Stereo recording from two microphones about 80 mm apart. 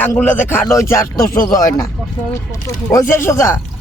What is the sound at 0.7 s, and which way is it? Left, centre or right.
Speech, left.